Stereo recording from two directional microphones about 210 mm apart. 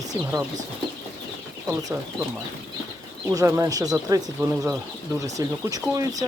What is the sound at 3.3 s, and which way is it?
Speech, 15° right (ahead or behind).